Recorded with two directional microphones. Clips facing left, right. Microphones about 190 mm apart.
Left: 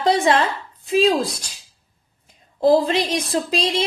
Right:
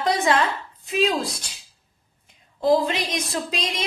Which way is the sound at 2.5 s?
35° left (ahead or behind).